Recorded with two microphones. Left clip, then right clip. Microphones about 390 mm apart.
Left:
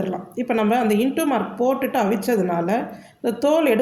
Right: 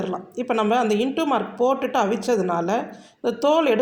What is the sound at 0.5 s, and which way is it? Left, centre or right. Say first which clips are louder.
A woman's voice: even; left.